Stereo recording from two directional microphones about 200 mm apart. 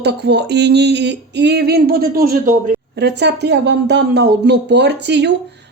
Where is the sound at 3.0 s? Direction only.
55° right (ahead or behind).